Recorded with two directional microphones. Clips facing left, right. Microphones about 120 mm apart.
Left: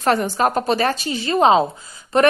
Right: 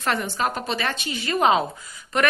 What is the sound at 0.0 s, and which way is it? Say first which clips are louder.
A woman's voice: left 7 dB; 45° left (ahead or behind).